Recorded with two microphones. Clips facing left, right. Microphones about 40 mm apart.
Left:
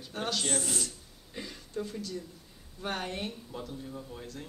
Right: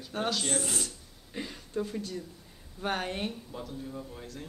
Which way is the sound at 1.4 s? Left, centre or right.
Centre.